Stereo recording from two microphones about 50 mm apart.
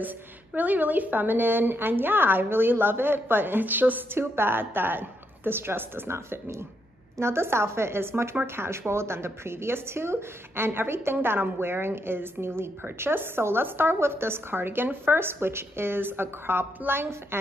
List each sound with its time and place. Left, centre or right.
0.6 s a woman's voice: right
4.1 s a woman's voice: right
6.1 s a woman's voice: right